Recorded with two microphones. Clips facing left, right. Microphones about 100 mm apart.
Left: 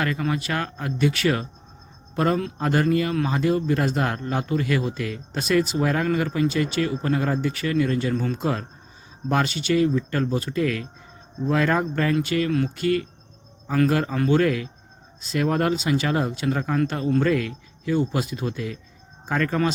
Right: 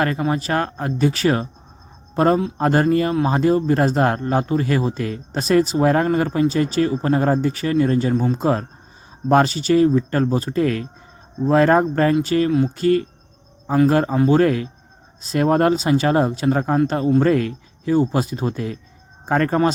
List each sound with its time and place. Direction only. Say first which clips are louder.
0.2 s speech: right 5 dB; 35° right (ahead or behind)
12.5 s speech: right 5 dB; 20° right (ahead or behind)
12.7 s speech: right 5 dB; 35° right (ahead or behind)